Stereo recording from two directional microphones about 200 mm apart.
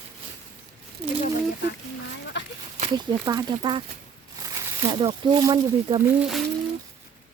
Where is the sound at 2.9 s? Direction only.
20° right (ahead or behind).